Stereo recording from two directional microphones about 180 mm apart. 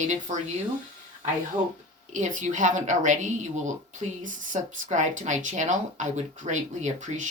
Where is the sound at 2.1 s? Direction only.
45° right (ahead or behind).